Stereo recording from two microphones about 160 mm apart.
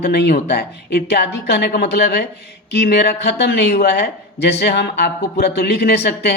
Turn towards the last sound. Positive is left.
turn(degrees=90)